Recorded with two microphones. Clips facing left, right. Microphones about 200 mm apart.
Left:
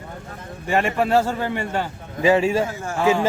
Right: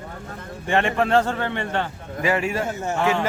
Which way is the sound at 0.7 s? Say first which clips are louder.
Even; 5° left (ahead or behind).